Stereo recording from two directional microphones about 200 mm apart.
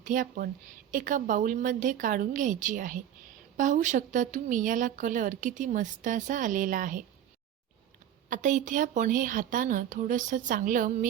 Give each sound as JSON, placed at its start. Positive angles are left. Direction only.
{"t": 0.0, "sound": "speech", "side_deg": -40}
{"t": 8.3, "sound": "speech", "side_deg": -40}